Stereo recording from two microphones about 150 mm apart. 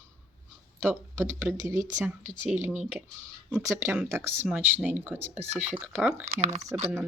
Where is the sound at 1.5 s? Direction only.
20° right (ahead or behind).